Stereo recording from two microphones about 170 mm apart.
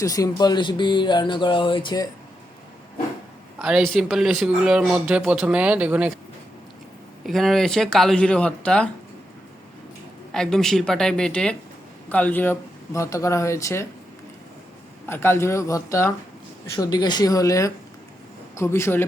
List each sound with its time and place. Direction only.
0.0 s speech: 20° left (ahead or behind)
3.6 s speech: centre (ahead or behind)
7.3 s speech: centre (ahead or behind)
10.3 s speech: 5° left (ahead or behind)
15.0 s speech: 15° left (ahead or behind)